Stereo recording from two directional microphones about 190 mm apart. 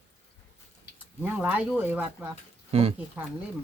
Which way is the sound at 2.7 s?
30° right (ahead or behind).